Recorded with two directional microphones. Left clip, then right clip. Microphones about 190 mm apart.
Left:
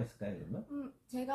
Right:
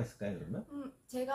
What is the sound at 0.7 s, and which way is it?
Speech, 20° right (ahead or behind).